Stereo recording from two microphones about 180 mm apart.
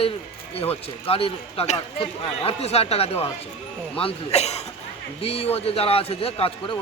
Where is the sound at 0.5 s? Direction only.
35° left (ahead or behind).